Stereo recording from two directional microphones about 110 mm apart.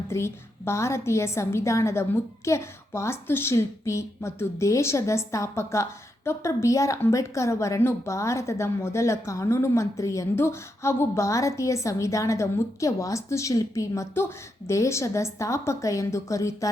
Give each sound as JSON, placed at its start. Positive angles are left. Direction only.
{"t": 0.1, "sound": "a woman's voice", "side_deg": 25}